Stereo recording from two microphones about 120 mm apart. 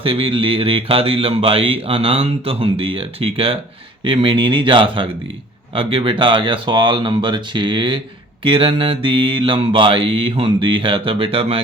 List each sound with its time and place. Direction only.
0.0 s speech: 50° right (ahead or behind)